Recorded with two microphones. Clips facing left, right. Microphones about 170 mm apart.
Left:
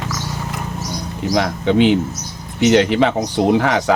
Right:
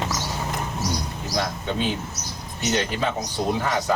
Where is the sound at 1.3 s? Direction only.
80° left.